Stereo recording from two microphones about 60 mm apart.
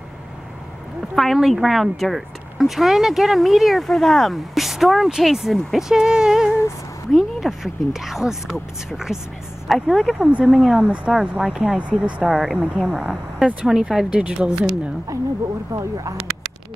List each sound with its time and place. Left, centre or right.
1.1 s speech: centre
10.1 s speech: centre
15.7 s speech: right